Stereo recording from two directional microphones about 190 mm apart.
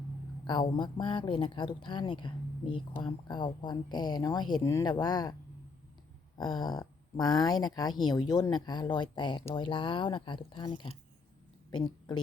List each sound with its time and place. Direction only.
0.4 s a woman's voice: 25° left (ahead or behind)